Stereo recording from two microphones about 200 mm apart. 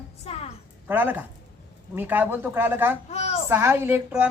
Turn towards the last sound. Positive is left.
turn(degrees=-10)  # may be behind; listen again after turning